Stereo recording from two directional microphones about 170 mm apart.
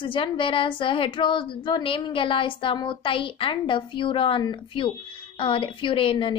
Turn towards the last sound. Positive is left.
turn(degrees=30)  # may be behind; listen again after turning